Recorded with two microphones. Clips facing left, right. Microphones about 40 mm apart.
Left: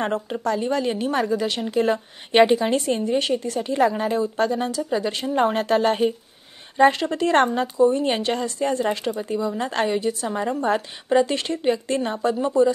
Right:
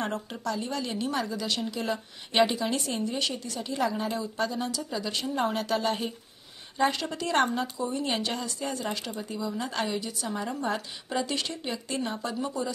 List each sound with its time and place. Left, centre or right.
0.0 s a woman's voice: left
0.4 s a woman's voice: left
9.3 s a woman's voice: left
9.6 s a woman's voice: left